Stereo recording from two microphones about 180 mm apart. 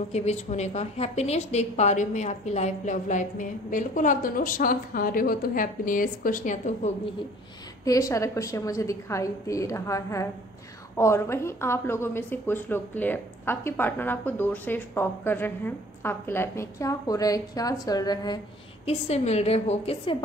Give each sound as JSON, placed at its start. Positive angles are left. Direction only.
{"t": 0.1, "sound": "a woman's voice", "side_deg": 40}
{"t": 7.8, "sound": "a woman's voice", "side_deg": 20}
{"t": 18.9, "sound": "a woman's voice", "side_deg": 35}